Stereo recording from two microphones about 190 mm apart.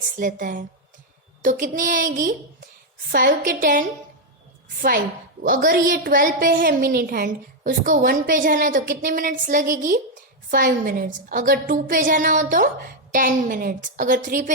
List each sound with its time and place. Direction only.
0.2 s a woman's voice: 45° right (ahead or behind)
5.4 s a woman's voice: 50° right (ahead or behind)